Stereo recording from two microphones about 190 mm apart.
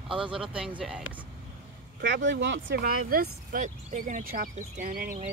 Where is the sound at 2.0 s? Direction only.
65° right (ahead or behind).